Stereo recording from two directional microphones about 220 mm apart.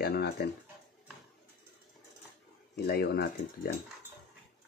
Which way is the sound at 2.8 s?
45° left (ahead or behind).